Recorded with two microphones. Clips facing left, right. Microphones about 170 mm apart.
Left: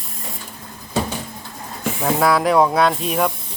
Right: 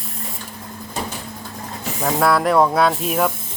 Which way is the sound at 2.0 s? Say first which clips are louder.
Even; centre (ahead or behind).